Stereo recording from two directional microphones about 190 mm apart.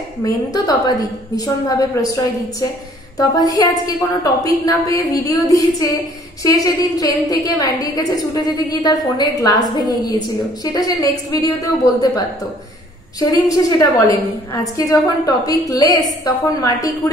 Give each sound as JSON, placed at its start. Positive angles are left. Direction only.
{"t": 0.2, "sound": "a woman's voice", "side_deg": 20}
{"t": 3.2, "sound": "a woman's voice", "side_deg": 20}
{"t": 13.2, "sound": "a woman's voice", "side_deg": 20}